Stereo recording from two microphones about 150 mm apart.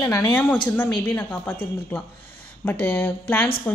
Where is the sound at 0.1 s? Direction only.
15° left (ahead or behind).